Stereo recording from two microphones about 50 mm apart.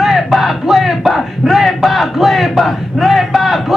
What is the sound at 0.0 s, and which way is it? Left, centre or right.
Battle cry, centre.